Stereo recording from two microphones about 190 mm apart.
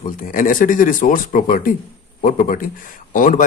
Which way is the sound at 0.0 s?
45° left (ahead or behind).